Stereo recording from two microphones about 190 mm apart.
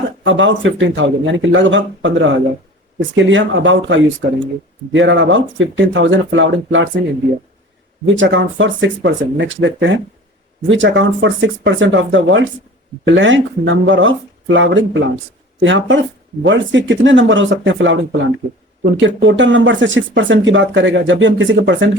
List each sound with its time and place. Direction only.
0.3 s speech: 80° right
4.2 s speech: 70° right (ahead or behind); by 7.0 s 85° right
8.0 s speech: 80° right